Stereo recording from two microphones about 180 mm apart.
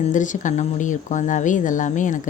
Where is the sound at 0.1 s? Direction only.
45° left (ahead or behind).